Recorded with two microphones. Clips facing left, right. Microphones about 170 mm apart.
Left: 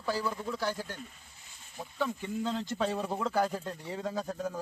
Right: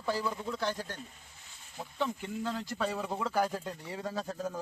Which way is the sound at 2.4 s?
20° left (ahead or behind).